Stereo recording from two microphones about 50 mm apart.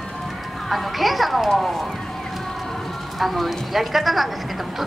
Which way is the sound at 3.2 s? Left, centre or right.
Centre.